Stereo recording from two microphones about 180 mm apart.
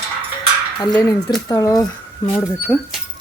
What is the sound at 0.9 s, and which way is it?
Speech, 15° left (ahead or behind).